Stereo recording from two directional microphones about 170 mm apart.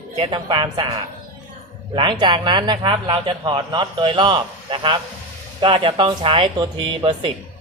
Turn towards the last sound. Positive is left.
turn(degrees=-30)  # may be behind; listen again after turning